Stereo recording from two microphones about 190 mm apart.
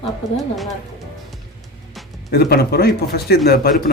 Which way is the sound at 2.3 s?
55° left (ahead or behind).